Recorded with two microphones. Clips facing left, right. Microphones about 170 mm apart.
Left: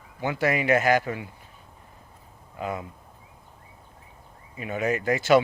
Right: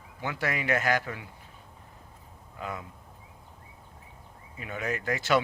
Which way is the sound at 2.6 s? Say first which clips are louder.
Left 6 dB; 10° left (ahead or behind).